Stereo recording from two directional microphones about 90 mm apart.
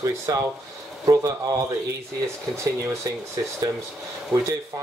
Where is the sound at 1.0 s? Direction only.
40° right (ahead or behind).